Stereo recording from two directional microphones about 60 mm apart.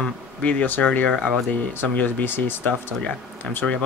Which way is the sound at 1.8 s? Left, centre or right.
Left.